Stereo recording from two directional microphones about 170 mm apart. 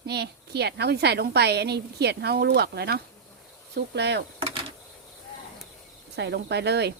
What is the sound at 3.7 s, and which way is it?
Speech, 80° right.